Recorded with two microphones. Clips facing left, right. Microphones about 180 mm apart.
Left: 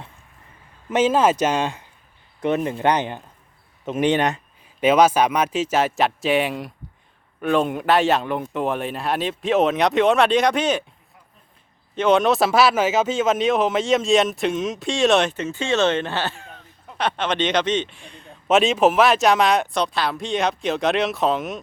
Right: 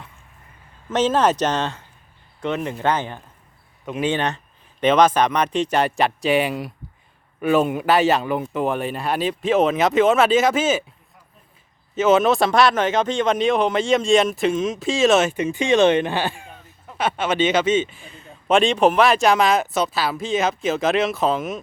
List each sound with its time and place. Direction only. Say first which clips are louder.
0.9 s speech: left 1 dB; 10° left (ahead or behind)
11.9 s speech: right 1 dB; 5° right (ahead or behind)